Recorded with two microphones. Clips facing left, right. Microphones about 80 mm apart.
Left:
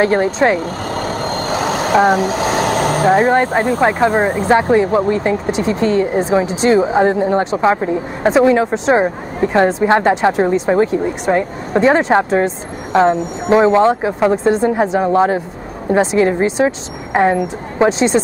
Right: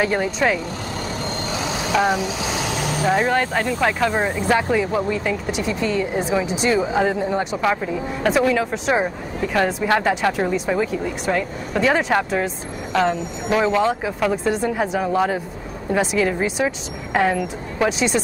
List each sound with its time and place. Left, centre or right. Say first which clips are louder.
0.0 s vehicle: left 7 dB; left
4.1 s speech: left 6 dB; left
7.6 s speech: left 6 dB; left